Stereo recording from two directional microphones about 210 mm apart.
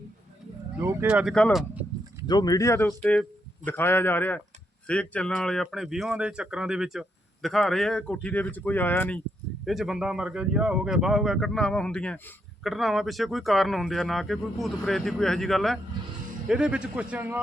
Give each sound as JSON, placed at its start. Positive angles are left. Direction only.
{"t": 0.8, "sound": "speech", "side_deg": -10}
{"t": 2.2, "sound": "speech", "side_deg": 20}
{"t": 3.0, "sound": "speech", "side_deg": 0}
{"t": 3.7, "sound": "speech", "side_deg": 10}